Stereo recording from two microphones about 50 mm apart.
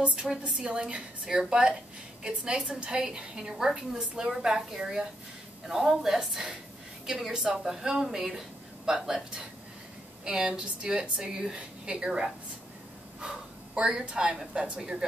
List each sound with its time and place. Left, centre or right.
0.4 s speech: right
13.7 s speech: centre